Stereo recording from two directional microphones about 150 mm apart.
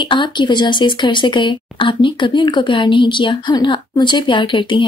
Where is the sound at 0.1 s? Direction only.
30° left (ahead or behind).